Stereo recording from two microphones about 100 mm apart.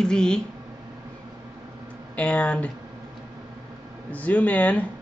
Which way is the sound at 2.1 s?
10° left (ahead or behind).